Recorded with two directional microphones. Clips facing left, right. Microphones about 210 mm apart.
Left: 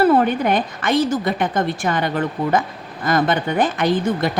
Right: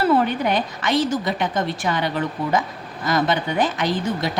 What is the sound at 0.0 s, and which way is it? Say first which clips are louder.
A woman's voice: left 3 dB; 50° left (ahead or behind).